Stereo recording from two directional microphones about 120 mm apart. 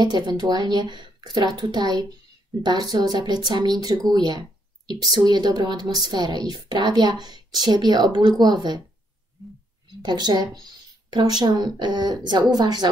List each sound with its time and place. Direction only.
0.0 s speech: 35° right (ahead or behind)
10.0 s speech: 40° right (ahead or behind)